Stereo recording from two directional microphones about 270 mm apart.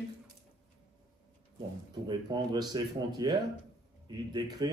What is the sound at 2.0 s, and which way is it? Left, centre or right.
A man's voice, centre.